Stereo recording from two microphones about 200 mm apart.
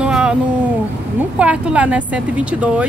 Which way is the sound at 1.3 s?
5° right (ahead or behind).